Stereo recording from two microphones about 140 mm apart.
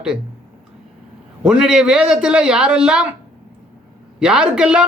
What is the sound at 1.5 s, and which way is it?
Speech, 5° right (ahead or behind).